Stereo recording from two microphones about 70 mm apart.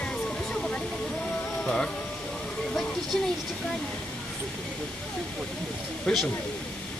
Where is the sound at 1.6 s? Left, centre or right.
Centre.